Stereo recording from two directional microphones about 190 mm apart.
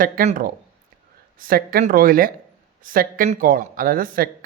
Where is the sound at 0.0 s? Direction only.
45° right (ahead or behind).